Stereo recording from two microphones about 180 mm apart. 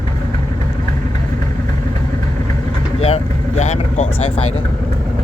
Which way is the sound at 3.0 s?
35° left (ahead or behind).